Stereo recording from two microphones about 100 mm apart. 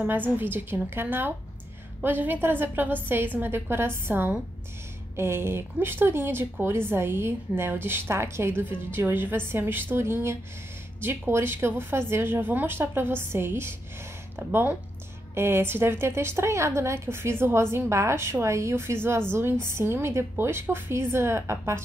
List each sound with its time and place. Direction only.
0.4 s speech: 20° right (ahead or behind)